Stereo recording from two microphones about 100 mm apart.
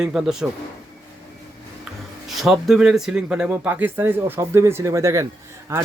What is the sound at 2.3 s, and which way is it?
Speech, centre (ahead or behind).